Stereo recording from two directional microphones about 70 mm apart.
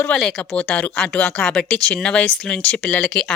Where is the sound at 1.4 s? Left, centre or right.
Centre.